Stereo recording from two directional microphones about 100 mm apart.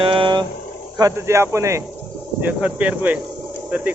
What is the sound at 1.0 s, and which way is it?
Speech, 30° right (ahead or behind).